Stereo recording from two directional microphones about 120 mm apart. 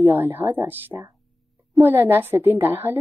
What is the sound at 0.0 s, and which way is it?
A woman's voice, 20° right (ahead or behind).